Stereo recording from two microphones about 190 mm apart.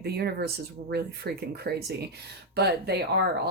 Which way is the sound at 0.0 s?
60° right (ahead or behind).